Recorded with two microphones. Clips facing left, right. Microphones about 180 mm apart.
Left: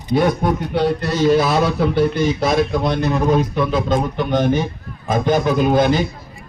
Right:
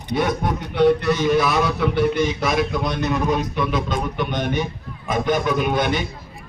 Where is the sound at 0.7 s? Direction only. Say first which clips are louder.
Right 7 dB; 35° left (ahead or behind).